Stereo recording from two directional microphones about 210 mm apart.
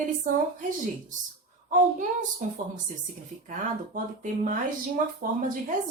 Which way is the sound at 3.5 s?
40° right (ahead or behind).